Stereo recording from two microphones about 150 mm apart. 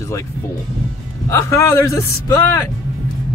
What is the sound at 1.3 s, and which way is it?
Speech, 20° left (ahead or behind).